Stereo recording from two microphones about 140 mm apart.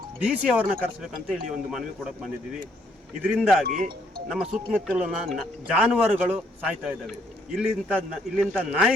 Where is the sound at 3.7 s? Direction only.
65° right (ahead or behind).